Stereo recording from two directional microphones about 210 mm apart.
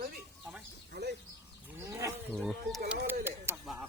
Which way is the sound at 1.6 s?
15° right (ahead or behind).